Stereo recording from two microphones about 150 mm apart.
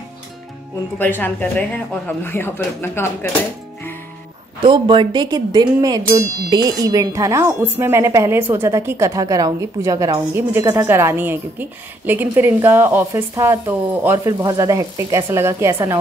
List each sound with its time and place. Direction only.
0.9 s speech: 15° left (ahead or behind)
4.6 s a woman's voice: 35° right (ahead or behind)